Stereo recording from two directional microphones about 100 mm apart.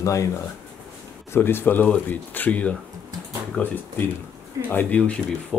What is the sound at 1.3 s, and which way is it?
Speech, 20° left (ahead or behind).